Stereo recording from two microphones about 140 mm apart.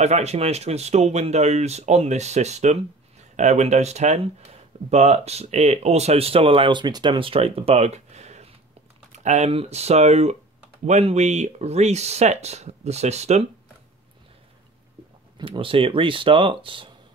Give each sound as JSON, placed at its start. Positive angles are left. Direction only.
{"t": 0.0, "sound": "speech", "side_deg": -50}
{"t": 15.3, "sound": "speech", "side_deg": -35}